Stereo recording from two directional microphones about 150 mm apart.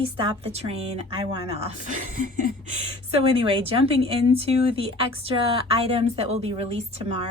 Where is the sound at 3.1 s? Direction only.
40° right (ahead or behind).